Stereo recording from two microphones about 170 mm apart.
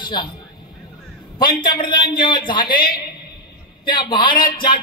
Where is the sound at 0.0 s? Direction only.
25° left (ahead or behind).